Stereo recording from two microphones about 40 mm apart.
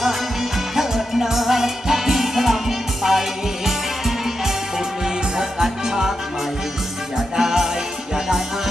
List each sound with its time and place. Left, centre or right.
0.0 s music: centre
7.2 s music: centre